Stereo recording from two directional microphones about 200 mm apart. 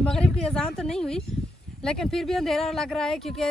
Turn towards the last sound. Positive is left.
turn(degrees=0)  # may be behind; listen again after turning